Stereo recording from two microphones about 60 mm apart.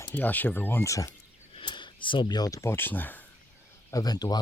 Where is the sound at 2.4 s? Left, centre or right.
Left.